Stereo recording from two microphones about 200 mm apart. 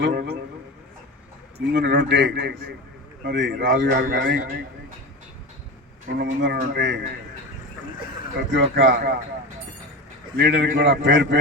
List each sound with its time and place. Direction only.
0.0 s a man's voice: 55° right (ahead or behind)
1.5 s a man's voice: 60° right (ahead or behind)
6.1 s a man's voice: 55° right (ahead or behind)
8.5 s a man's voice: 60° right (ahead or behind)
10.3 s a man's voice: 55° right (ahead or behind)